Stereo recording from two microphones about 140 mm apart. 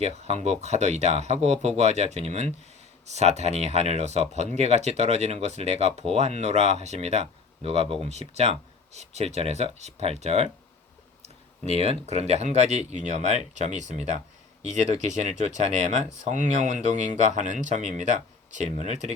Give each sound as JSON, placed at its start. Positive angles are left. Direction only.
{"t": 0.0, "sound": "speech", "side_deg": -50}
{"t": 11.7, "sound": "speech", "side_deg": -50}